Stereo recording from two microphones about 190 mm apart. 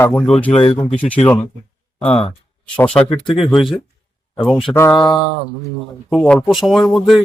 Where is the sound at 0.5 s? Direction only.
30° left (ahead or behind).